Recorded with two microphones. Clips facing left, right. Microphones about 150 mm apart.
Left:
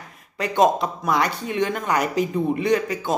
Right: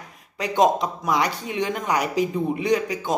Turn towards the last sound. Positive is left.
turn(degrees=-15)  # may be behind; listen again after turning